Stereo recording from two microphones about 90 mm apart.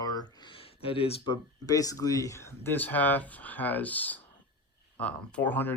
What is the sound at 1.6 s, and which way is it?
Speech, 40° left (ahead or behind).